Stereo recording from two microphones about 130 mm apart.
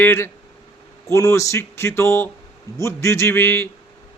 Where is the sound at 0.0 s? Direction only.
15° left (ahead or behind).